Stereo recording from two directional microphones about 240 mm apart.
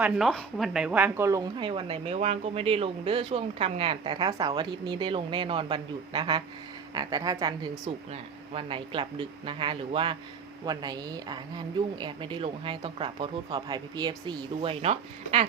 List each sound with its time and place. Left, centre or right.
0.0 s speech: centre; by 15.4 s right